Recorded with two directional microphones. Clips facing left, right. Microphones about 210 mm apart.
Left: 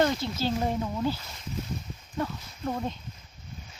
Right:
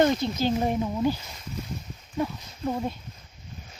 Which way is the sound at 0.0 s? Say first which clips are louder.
Right 4 dB; 20° right (ahead or behind).